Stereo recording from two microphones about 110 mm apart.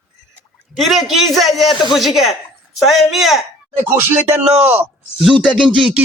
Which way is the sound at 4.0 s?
20° right (ahead or behind).